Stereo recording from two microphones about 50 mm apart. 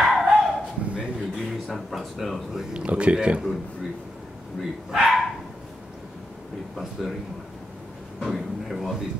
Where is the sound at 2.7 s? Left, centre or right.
Right.